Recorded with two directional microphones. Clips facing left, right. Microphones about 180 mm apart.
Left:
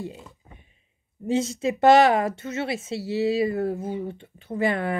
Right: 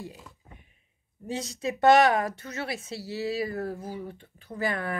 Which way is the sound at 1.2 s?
25° left (ahead or behind).